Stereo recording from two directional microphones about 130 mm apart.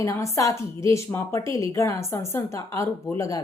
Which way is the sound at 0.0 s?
25° left (ahead or behind).